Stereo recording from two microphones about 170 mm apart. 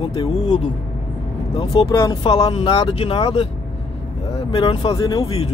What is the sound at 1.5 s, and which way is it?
Speech, 30° left (ahead or behind).